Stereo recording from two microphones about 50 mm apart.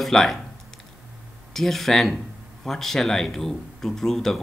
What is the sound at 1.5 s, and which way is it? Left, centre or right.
Speech, centre.